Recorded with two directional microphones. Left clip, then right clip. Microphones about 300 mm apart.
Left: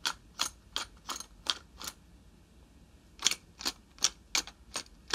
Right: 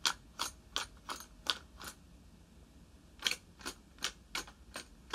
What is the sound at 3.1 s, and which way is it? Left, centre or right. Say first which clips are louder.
Tick-tock: left 5 dB; centre.